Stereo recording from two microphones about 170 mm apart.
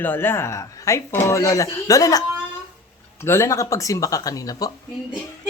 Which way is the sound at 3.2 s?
15° left (ahead or behind).